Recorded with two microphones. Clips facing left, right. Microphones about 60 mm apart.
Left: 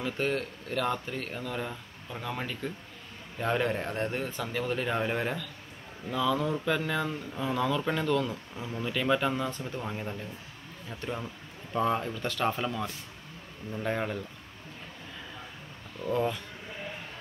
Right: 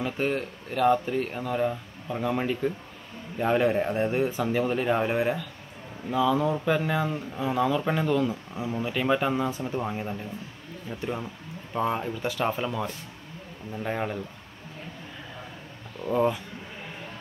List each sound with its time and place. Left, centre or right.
0.0 s speech: centre
16.1 s speech: centre